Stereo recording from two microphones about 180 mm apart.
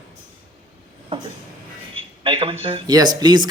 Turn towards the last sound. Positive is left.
turn(degrees=-25)  # may be behind; listen again after turning